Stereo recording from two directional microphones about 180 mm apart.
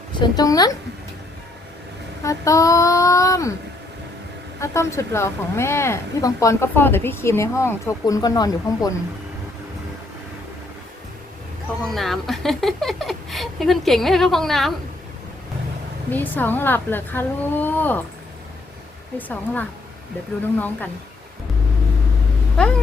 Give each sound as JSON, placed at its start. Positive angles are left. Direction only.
{"t": 0.2, "sound": "a woman's voice", "side_deg": 20}
{"t": 2.2, "sound": "speech", "side_deg": 15}
{"t": 4.6, "sound": "speech", "side_deg": 15}
{"t": 11.8, "sound": "a woman's voice", "side_deg": 0}
{"t": 16.0, "sound": "speech", "side_deg": 10}
{"t": 20.6, "sound": "speech", "side_deg": 10}